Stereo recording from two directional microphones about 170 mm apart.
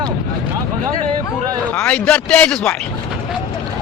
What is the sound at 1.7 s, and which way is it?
A man's voice, 10° left (ahead or behind).